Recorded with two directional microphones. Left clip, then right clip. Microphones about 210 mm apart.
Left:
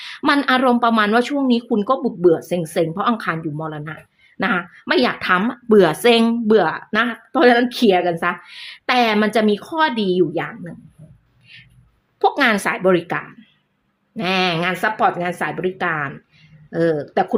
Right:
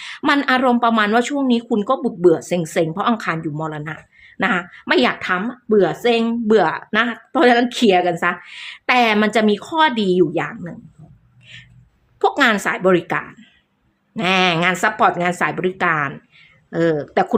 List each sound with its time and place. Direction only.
0.0 s speech: 5° left (ahead or behind)
5.4 s speech: 20° left (ahead or behind)
6.5 s speech: 5° left (ahead or behind); by 10.8 s 10° right (ahead or behind)
12.2 s speech: centre (ahead or behind)